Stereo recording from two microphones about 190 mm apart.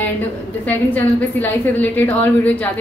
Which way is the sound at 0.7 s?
10° left (ahead or behind).